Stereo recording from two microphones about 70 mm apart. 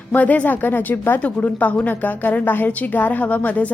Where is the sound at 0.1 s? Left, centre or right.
Left.